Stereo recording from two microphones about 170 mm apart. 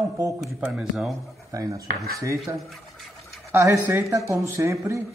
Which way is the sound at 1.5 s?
20° right (ahead or behind).